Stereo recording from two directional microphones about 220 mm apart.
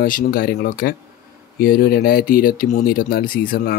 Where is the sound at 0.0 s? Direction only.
40° left (ahead or behind).